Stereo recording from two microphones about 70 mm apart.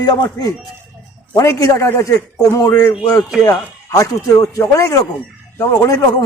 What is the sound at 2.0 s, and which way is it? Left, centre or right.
Speech, left.